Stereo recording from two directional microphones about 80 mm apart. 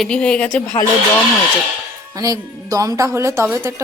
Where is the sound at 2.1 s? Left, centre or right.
Right.